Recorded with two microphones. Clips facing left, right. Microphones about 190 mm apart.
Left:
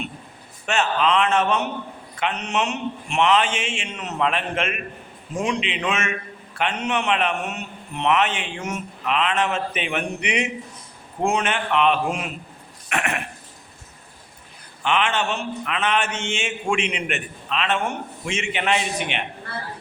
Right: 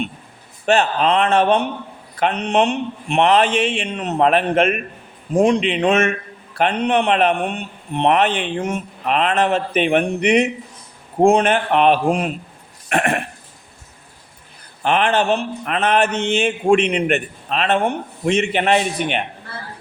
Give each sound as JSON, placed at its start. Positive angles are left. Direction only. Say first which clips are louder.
{"t": 0.6, "sound": "a man's voice", "louder": "right 5 dB", "side_deg": -35}
{"t": 14.8, "sound": "a man's voice", "louder": "right 5 dB", "side_deg": -40}